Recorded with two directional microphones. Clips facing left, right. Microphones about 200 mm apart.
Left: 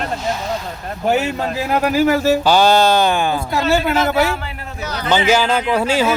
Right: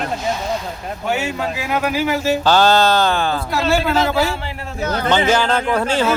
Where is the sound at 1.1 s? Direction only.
35° left (ahead or behind).